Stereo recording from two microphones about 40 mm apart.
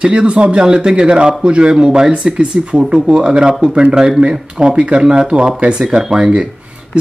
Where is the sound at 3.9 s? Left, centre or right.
Centre.